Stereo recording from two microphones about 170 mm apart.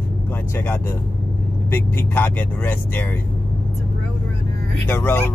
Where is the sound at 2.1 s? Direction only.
10° left (ahead or behind).